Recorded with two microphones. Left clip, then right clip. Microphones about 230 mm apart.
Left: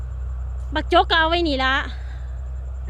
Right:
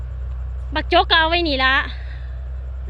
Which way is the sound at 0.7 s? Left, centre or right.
Left.